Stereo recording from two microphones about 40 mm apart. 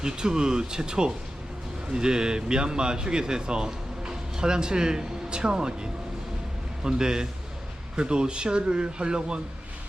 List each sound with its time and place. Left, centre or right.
0.0 s speech: centre